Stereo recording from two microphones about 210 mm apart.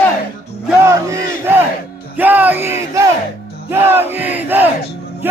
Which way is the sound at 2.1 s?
10° right (ahead or behind).